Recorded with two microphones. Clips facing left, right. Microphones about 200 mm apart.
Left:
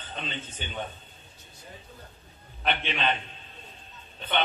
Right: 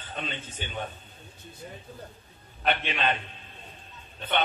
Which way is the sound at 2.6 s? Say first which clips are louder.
Right 1 dB; 45° right (ahead or behind).